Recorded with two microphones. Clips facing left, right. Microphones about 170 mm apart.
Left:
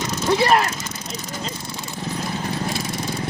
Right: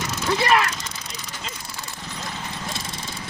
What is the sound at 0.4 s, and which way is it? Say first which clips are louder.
Speech: left 1 dB; 40° left (ahead or behind).